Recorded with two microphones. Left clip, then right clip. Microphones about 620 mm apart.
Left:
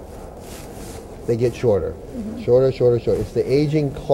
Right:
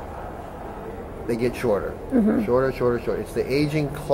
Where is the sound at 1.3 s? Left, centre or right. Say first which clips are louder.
Left 4 dB; left.